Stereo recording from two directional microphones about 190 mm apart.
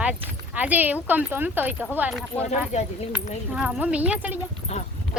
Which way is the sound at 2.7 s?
35° left (ahead or behind).